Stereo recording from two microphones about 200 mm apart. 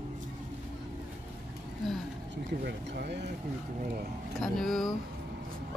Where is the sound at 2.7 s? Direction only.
55° right (ahead or behind).